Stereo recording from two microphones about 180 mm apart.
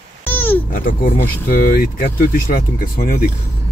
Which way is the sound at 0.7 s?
50° left (ahead or behind).